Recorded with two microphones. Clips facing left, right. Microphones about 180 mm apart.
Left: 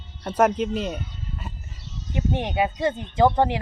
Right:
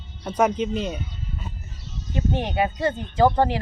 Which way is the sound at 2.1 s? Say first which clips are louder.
Even; 20° left (ahead or behind).